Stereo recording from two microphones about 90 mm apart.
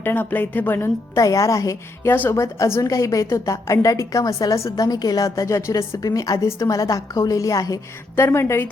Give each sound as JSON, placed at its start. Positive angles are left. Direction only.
{"t": 0.0, "sound": "a woman's voice", "side_deg": 20}
{"t": 1.1, "sound": "a woman's voice", "side_deg": 40}
{"t": 8.1, "sound": "a woman's voice", "side_deg": 25}